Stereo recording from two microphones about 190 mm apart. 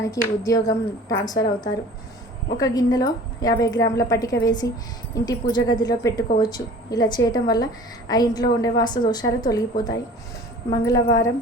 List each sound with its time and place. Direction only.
0.0 s a woman's voice: 15° left (ahead or behind)